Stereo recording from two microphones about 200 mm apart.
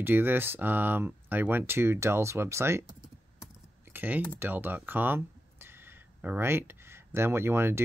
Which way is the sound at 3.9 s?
10° right (ahead or behind).